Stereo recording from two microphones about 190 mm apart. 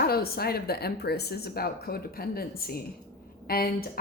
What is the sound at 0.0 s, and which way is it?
A woman's voice, 55° left (ahead or behind).